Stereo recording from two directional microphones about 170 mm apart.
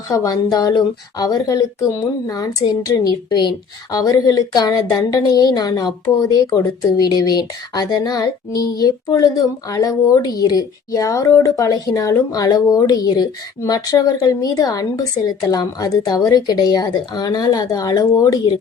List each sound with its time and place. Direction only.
0.1 s a woman's voice: 20° left (ahead or behind)